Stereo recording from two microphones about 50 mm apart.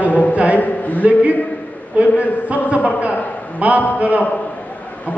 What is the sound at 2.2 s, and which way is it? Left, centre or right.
A man's voice, right.